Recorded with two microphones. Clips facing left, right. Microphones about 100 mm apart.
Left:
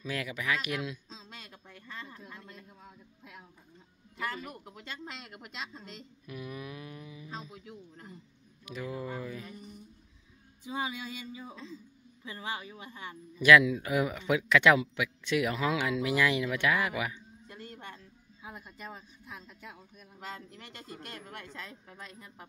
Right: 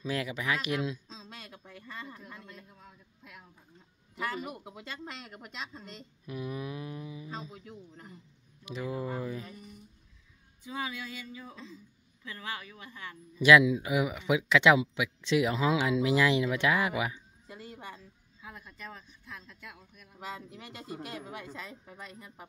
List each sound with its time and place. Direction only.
0.0 s a man's voice: 25° right (ahead or behind)
1.0 s a sound: 5° left (ahead or behind)
2.5 s a sound: 15° left (ahead or behind)
4.4 s a woman's voice: 10° right (ahead or behind)
6.2 s a man's voice: 25° right (ahead or behind)
7.5 s a woman's voice: centre (ahead or behind)
8.6 s a man's voice: 25° right (ahead or behind)
9.5 s speech: 25° left (ahead or behind)
13.4 s a man's voice: 20° right (ahead or behind)
17.5 s music: 5° right (ahead or behind)
18.4 s speech: 10° left (ahead or behind)
20.2 s a woman's voice: 5° right (ahead or behind)